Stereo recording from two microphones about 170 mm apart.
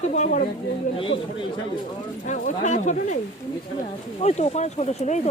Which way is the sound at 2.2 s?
50° left (ahead or behind).